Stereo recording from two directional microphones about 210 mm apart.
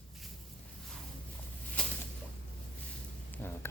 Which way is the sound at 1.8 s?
5° left (ahead or behind).